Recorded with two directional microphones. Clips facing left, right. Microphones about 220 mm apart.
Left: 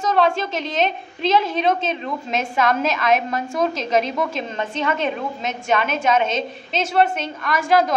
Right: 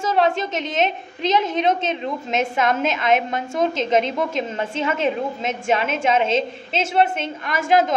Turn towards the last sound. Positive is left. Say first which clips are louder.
# even
turn(degrees=-25)  # may be behind; listen again after turning